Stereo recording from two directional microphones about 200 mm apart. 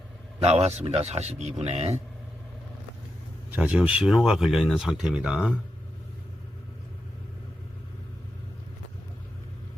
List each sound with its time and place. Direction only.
0.4 s a man's voice: 30° right (ahead or behind)
3.5 s speech: 5° right (ahead or behind)